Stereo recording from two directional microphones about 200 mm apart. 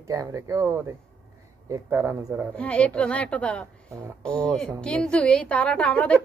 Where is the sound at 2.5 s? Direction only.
5° left (ahead or behind).